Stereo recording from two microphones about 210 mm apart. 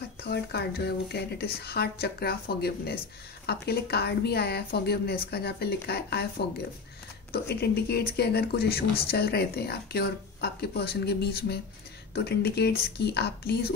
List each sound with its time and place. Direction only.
0.2 s speech: 50° left (ahead or behind)
7.4 s speech: 50° left (ahead or behind)